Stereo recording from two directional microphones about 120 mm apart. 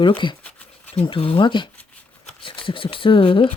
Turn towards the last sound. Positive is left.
turn(degrees=45)  # may be behind; listen again after turning